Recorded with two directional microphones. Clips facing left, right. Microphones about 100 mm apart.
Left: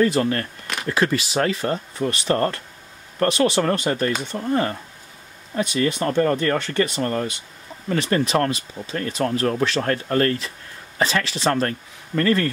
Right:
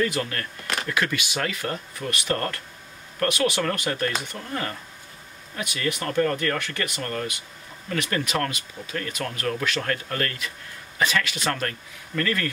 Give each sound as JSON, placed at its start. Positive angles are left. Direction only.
{"t": 0.0, "sound": "speech", "side_deg": 35}